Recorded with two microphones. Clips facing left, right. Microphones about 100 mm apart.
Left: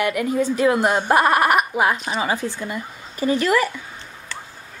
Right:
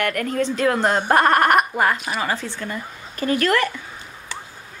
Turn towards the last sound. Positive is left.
turn(degrees=5)  # may be behind; listen again after turning